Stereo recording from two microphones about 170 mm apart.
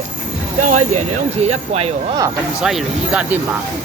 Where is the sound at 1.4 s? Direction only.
40° right (ahead or behind).